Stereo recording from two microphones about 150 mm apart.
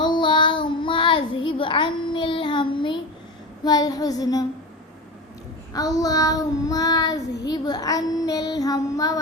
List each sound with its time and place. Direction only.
0.0 s child singing: 30° left (ahead or behind)
5.7 s child singing: 25° left (ahead or behind)